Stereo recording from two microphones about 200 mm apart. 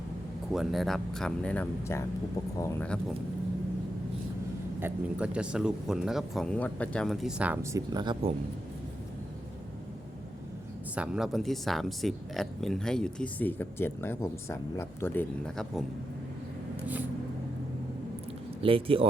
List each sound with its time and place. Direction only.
0.5 s speech: centre (ahead or behind)
4.8 s speech: 5° right (ahead or behind); by 8.3 s 25° right (ahead or behind)
10.9 s speech: 5° right (ahead or behind)
18.6 s speech: 25° right (ahead or behind)